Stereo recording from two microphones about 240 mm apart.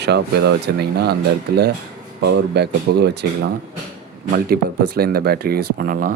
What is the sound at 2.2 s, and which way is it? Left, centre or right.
Speech, right.